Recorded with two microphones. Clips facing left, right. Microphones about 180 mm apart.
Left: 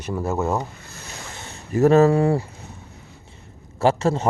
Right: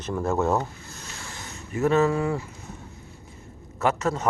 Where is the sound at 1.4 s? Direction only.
30° left (ahead or behind).